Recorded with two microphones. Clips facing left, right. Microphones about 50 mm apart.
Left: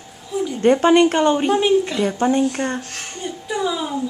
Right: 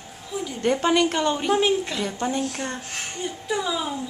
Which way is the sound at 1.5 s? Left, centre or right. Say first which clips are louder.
Left 5 dB; centre.